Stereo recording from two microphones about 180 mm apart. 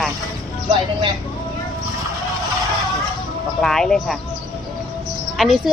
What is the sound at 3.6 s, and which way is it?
Speech, centre (ahead or behind).